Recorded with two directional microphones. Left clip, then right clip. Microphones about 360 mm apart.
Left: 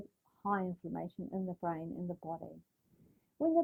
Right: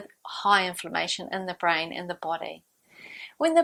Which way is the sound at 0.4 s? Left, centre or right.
Centre.